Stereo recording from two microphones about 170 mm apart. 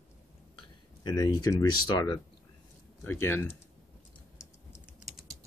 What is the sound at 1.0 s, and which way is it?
Speech, 20° left (ahead or behind).